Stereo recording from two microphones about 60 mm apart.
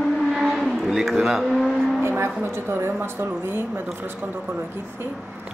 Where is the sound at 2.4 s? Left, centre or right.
Right.